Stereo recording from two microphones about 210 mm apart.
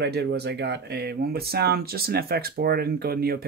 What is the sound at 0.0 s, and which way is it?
Speech, 50° right (ahead or behind).